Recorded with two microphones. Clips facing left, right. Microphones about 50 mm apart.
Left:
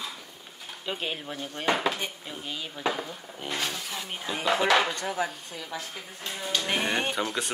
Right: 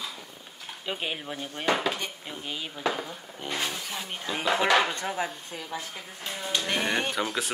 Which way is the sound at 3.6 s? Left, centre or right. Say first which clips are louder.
Even; centre.